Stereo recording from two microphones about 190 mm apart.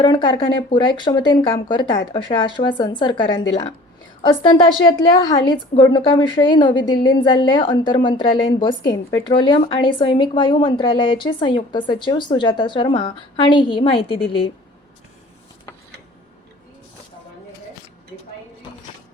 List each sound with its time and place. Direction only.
0.0 s a woman's voice: 25° left (ahead or behind)